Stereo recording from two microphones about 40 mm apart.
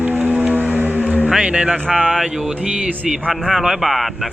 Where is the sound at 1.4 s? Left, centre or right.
Right.